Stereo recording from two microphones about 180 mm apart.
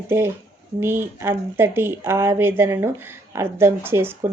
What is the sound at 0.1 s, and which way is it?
Speech, 15° right (ahead or behind).